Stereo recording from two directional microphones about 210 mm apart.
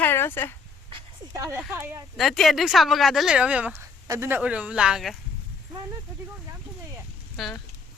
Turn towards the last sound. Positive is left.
turn(degrees=0)  # may be behind; listen again after turning